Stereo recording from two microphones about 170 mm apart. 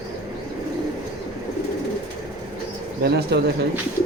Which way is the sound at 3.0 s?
70° right (ahead or behind).